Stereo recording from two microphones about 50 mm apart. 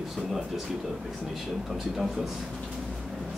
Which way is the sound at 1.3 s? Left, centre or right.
Centre.